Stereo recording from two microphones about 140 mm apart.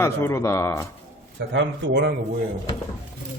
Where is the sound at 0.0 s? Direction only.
20° left (ahead or behind).